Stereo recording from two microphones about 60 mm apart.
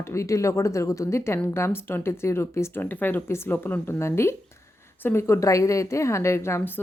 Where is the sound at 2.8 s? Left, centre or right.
Left.